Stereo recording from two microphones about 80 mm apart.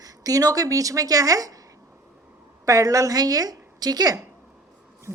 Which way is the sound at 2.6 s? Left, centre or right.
Right.